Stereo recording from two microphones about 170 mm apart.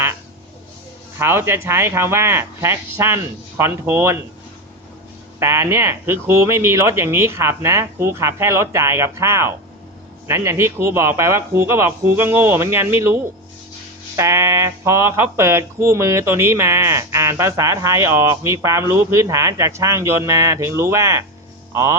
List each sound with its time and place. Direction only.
1.2 s speech: 15° right (ahead or behind)
5.4 s speech: 15° right (ahead or behind)
14.2 s speech: 15° right (ahead or behind)